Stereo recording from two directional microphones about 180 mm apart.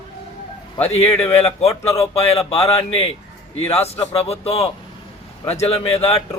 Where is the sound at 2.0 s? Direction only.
35° left (ahead or behind).